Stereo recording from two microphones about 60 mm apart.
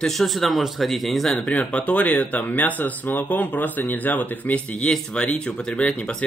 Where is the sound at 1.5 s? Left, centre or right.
Left.